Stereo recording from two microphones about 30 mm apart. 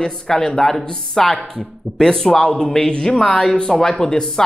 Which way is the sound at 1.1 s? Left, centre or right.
Centre.